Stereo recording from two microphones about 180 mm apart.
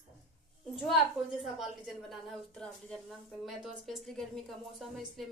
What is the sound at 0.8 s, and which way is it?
A woman's voice, centre (ahead or behind).